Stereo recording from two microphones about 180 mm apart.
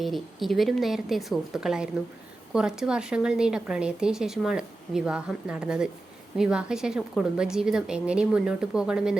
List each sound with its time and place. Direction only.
0.0 s speech: centre (ahead or behind)